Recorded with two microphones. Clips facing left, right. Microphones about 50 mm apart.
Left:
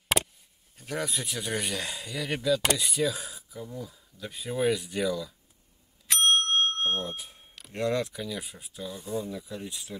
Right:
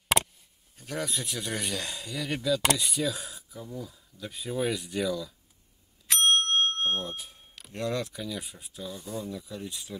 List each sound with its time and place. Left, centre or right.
0.7 s speech: centre
6.0 s bicycle bell: centre
7.7 s speech: centre